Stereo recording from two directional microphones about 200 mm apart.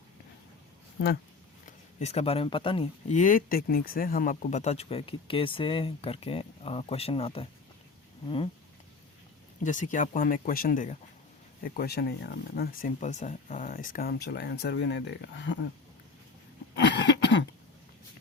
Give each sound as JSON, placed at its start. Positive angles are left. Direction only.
{"t": 1.6, "sound": "speech", "side_deg": 35}
{"t": 9.6, "sound": "speech", "side_deg": 40}
{"t": 16.7, "sound": "throat clearing", "side_deg": 60}